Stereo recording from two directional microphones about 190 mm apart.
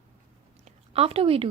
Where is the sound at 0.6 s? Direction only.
30° right (ahead or behind).